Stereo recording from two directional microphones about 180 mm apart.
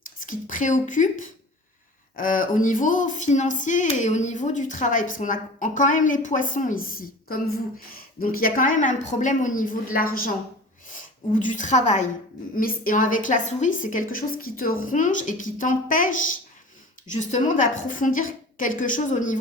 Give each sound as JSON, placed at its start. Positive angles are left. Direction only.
{"t": 0.2, "sound": "a woman's voice", "side_deg": 45}